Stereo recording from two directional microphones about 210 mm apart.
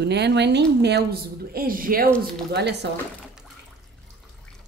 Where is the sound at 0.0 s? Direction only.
55° right (ahead or behind).